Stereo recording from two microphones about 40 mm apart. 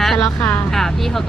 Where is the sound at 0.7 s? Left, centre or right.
Centre.